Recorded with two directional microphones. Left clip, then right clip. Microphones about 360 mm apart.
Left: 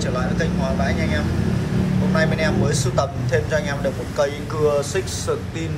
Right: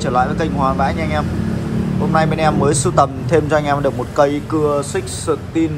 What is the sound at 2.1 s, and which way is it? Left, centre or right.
A man's voice, centre.